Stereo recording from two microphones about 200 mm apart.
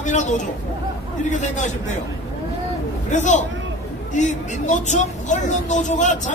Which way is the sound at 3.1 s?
35° left (ahead or behind).